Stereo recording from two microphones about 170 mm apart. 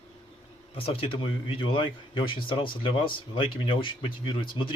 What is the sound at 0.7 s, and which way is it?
Speech, 35° left (ahead or behind).